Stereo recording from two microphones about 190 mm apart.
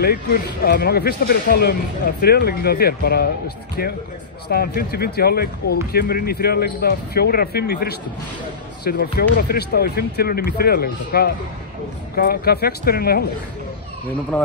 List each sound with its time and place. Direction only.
0.0 s speech: 55° left (ahead or behind)